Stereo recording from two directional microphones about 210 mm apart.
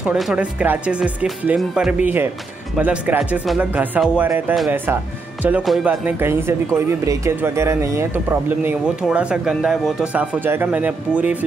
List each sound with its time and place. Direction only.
0.0 s speech: centre (ahead or behind)